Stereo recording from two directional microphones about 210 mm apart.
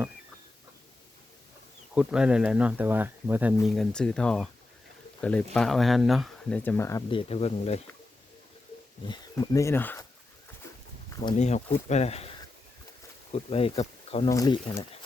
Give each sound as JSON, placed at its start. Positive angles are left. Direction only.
{"t": 2.0, "sound": "speech", "side_deg": -5}
{"t": 7.1, "sound": "speech", "side_deg": 25}
{"t": 9.0, "sound": "speech", "side_deg": 20}
{"t": 11.2, "sound": "speech", "side_deg": 30}
{"t": 13.3, "sound": "speech", "side_deg": 25}
{"t": 14.3, "sound": "speech", "side_deg": 15}